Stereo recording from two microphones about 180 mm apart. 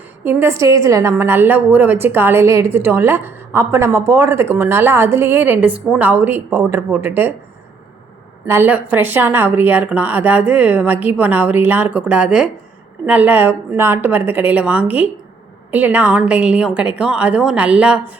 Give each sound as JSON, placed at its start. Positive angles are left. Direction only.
{"t": 0.3, "sound": "a woman's voice", "side_deg": -15}
{"t": 8.4, "sound": "a woman's voice", "side_deg": -10}